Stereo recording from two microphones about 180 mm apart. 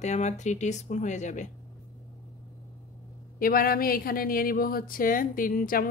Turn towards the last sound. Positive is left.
turn(degrees=50)  # may be behind; listen again after turning